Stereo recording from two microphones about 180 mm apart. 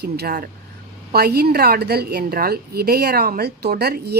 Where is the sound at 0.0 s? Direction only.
60° right (ahead or behind).